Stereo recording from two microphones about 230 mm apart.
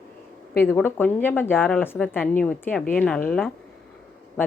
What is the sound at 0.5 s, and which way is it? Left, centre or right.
A woman's voice, centre.